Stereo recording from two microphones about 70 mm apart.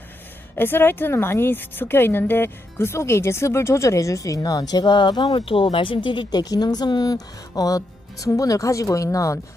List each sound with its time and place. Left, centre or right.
0.5 s a woman's voice: left
6.1 s a woman's voice: left